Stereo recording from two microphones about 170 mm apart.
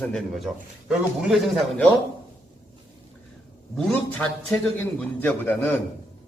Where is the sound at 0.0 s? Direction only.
5° left (ahead or behind).